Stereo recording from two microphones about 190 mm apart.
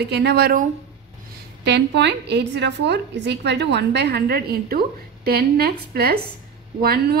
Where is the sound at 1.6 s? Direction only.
65° right (ahead or behind).